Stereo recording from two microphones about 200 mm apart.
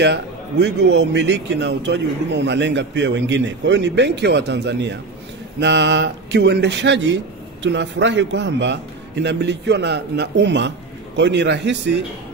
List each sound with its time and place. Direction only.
0.0 s a man's voice: 60° right (ahead or behind)